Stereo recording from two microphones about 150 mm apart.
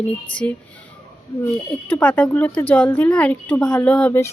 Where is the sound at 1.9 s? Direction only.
10° left (ahead or behind).